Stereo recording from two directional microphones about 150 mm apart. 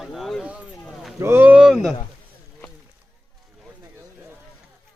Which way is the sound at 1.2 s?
15° right (ahead or behind).